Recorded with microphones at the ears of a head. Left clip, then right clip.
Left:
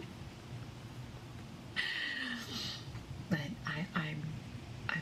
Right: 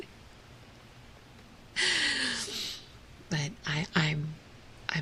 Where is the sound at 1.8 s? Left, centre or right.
Right.